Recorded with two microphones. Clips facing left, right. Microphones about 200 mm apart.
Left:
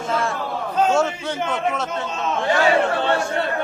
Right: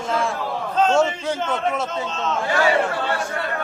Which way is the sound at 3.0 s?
25° left (ahead or behind).